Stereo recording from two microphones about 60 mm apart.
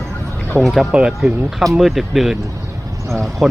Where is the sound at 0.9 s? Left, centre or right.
Centre.